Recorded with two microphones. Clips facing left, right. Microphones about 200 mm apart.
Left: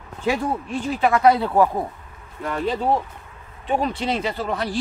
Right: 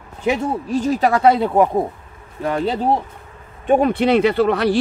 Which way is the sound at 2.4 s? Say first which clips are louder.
Right 5 dB; 35° right (ahead or behind).